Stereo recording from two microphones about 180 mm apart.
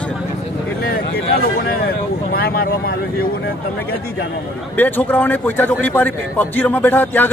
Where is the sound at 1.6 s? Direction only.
55° left (ahead or behind).